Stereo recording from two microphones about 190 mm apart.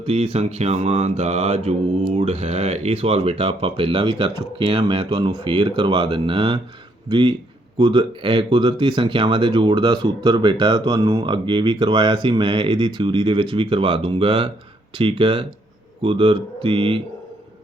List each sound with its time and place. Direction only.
0.0 s mantra: 30° right (ahead or behind)
2.1 s speech: 35° right (ahead or behind)